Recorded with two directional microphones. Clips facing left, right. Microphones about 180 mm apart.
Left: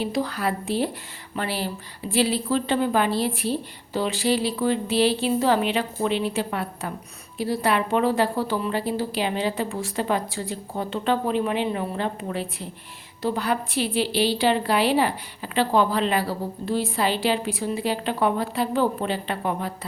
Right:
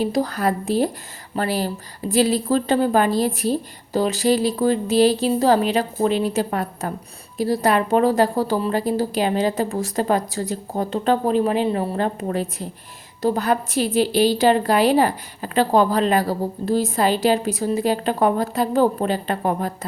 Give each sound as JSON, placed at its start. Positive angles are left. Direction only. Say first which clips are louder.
{"t": 0.0, "sound": "a woman's voice", "louder": "right 5 dB", "side_deg": -40}